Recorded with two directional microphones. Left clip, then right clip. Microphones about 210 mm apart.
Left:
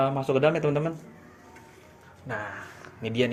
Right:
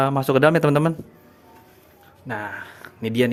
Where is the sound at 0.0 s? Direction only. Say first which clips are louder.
Right 6 dB; 50° right (ahead or behind).